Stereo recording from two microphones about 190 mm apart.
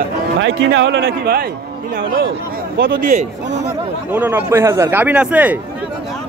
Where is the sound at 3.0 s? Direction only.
40° right (ahead or behind).